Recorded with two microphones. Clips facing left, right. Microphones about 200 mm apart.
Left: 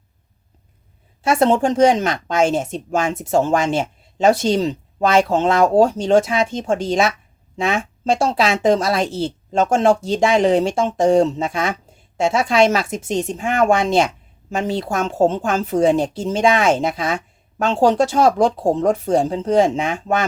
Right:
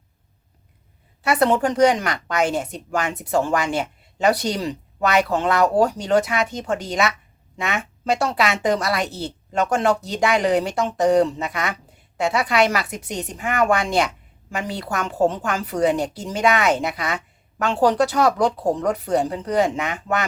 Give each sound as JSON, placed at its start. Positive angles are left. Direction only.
{"t": 1.2, "sound": "a woman's voice", "side_deg": 25}